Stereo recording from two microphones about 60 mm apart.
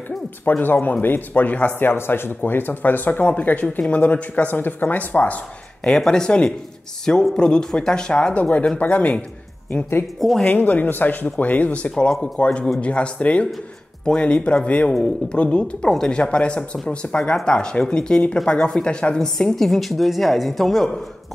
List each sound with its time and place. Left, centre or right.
0.5 s speech: left
1.9 s speech: left
5.9 s speech: centre
10.4 s speech: left; by 20.9 s centre